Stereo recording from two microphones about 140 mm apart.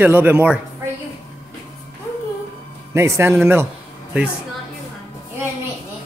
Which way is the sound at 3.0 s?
20° right (ahead or behind).